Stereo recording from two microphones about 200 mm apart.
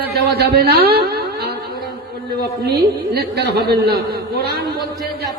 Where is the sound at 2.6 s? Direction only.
50° right (ahead or behind).